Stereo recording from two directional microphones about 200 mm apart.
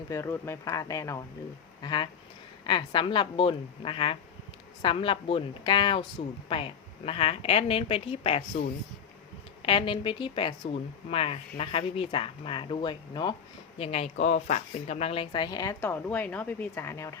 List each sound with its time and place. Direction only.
0.1 s speech: 15° left (ahead or behind); by 8.6 s 30° left (ahead or behind)
9.6 s speech: 25° left (ahead or behind)
15.8 s speech: 5° left (ahead or behind)